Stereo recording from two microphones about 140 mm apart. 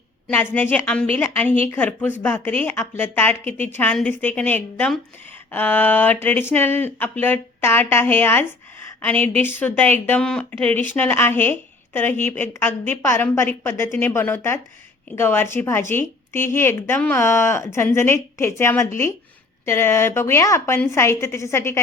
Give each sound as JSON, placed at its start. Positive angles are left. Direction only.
{"t": 0.3, "sound": "a woman's voice", "side_deg": 15}